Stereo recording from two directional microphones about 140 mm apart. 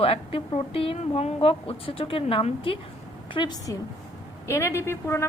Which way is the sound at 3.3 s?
30° left (ahead or behind).